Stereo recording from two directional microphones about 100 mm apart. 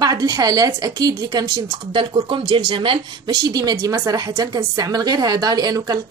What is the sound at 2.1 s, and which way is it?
A woman's voice, 60° right (ahead or behind).